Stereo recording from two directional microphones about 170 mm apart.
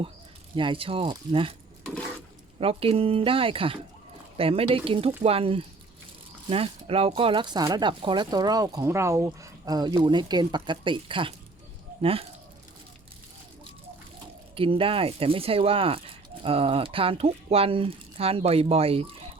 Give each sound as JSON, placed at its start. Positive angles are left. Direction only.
{"t": 0.5, "sound": "speech", "side_deg": -30}
{"t": 1.8, "sound": "a sound", "side_deg": 5}
{"t": 2.6, "sound": "speech", "side_deg": -35}
{"t": 14.5, "sound": "speech", "side_deg": -30}